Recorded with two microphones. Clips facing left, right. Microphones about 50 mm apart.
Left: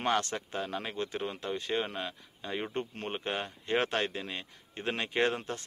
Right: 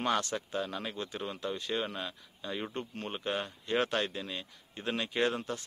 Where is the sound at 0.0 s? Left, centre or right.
Left.